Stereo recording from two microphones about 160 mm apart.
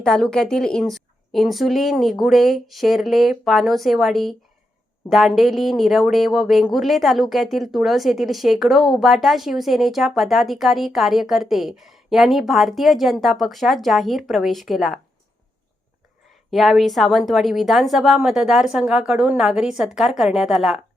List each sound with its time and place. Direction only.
0.0 s speech: 5° left (ahead or behind)
16.5 s speech: centre (ahead or behind)